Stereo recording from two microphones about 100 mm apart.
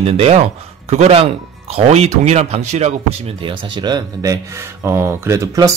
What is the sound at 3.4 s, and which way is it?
Speech, 50° right (ahead or behind).